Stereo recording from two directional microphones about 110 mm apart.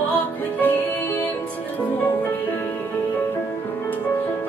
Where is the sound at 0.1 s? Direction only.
15° left (ahead or behind).